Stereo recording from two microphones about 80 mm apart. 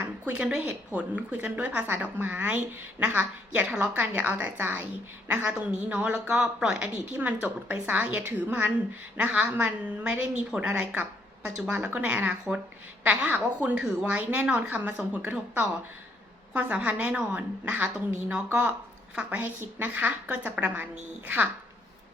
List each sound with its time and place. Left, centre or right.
0.0 s a woman's voice: centre